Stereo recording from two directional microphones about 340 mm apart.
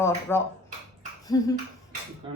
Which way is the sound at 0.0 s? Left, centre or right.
Centre.